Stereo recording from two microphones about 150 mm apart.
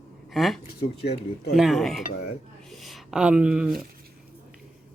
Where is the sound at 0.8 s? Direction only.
90° left.